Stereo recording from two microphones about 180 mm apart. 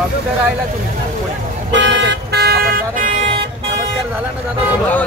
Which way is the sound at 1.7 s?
80° right.